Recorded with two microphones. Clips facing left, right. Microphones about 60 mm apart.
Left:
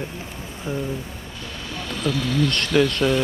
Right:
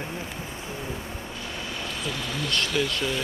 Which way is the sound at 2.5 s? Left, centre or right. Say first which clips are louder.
Left 2 dB; left.